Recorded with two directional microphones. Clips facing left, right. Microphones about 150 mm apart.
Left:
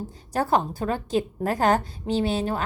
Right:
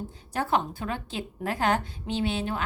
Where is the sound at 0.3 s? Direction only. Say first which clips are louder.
Left 4 dB; 40° left (ahead or behind).